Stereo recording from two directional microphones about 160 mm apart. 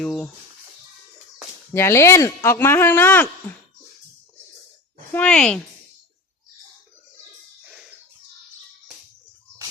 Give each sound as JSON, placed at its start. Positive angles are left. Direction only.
{"t": 0.0, "sound": "speech", "side_deg": 5}
{"t": 1.7, "sound": "speech", "side_deg": 15}
{"t": 5.1, "sound": "speech", "side_deg": 5}